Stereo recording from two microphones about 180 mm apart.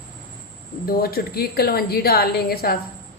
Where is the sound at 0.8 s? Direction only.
55° left (ahead or behind).